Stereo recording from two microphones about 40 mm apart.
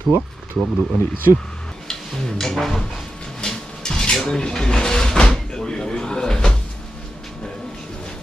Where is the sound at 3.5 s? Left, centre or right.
Centre.